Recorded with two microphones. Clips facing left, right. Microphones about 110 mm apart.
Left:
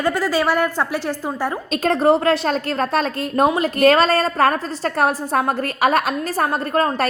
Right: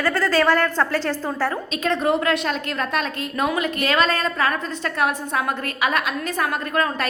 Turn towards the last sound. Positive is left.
turn(degrees=35)  # may be behind; listen again after turning